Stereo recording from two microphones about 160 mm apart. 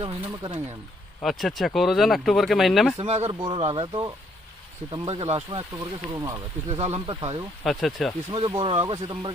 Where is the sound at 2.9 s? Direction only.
40° right (ahead or behind); by 6.4 s 25° right (ahead or behind).